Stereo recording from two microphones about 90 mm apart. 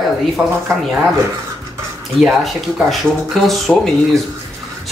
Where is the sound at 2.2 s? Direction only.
Centre (ahead or behind).